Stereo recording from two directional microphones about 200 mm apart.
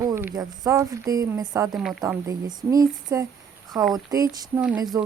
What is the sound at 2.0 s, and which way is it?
Speech, 15° right (ahead or behind).